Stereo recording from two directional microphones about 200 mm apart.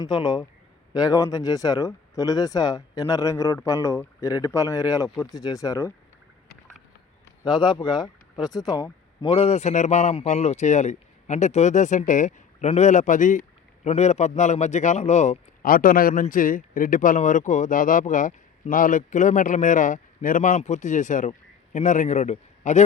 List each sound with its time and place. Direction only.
0.0 s a man's voice: 20° left (ahead or behind)
7.4 s speech: 20° left (ahead or behind)